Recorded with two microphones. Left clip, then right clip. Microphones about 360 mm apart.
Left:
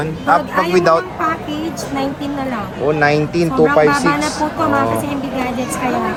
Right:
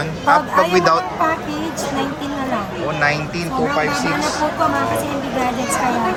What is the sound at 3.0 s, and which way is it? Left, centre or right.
Speech, centre.